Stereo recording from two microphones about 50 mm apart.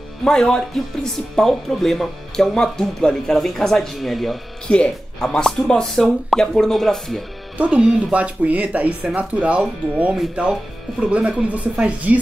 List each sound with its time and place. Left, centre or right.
0.2 s speech: centre
4.6 s speech: centre
7.5 s speech: right